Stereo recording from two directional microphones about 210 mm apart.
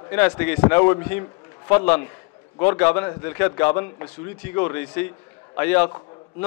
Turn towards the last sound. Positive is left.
turn(degrees=10)  # may be behind; listen again after turning